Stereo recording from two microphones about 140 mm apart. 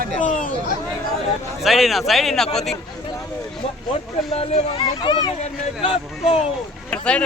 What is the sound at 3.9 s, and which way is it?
Speech, 50° left (ahead or behind).